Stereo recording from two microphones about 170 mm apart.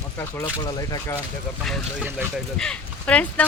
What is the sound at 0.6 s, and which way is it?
Speech, 20° left (ahead or behind).